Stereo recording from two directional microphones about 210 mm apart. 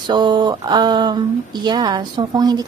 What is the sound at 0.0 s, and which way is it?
Speech, 20° right (ahead or behind).